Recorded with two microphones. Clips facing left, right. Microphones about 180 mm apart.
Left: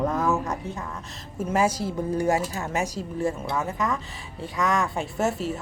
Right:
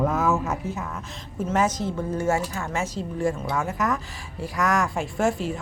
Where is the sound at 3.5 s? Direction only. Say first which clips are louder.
Right 1 dB; centre (ahead or behind).